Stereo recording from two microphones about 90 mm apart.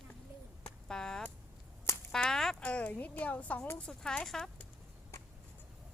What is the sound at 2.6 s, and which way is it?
Speech, 15° left (ahead or behind).